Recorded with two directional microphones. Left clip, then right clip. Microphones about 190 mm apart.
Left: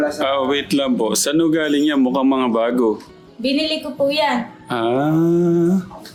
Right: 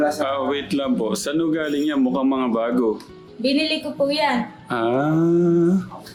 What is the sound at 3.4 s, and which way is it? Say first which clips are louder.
Speech: left 1 dB; 20° left (ahead or behind).